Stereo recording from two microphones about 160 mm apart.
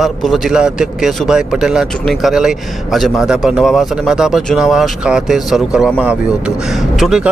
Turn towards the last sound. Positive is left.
turn(degrees=-5)  # may be behind; listen again after turning